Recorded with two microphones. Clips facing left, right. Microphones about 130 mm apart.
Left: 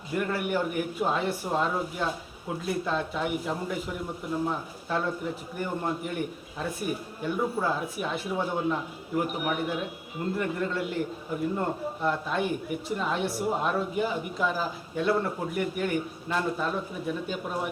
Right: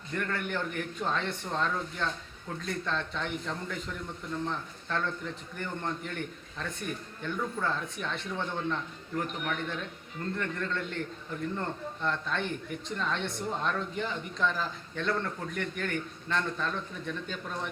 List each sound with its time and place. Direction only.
0.1 s speech: 10° left (ahead or behind)